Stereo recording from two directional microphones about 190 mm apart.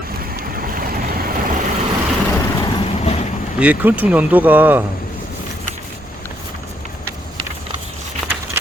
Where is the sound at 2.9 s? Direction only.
35° left (ahead or behind).